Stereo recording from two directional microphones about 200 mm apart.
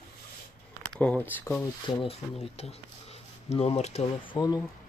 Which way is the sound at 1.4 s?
10° left (ahead or behind).